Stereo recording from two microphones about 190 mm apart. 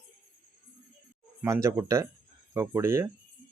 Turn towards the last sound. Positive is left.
turn(degrees=-15)  # may be behind; listen again after turning